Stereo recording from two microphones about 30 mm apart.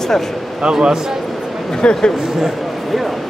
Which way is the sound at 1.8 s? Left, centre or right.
Left.